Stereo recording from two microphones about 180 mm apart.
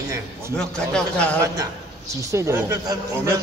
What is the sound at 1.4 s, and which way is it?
A man's voice, 15° right (ahead or behind).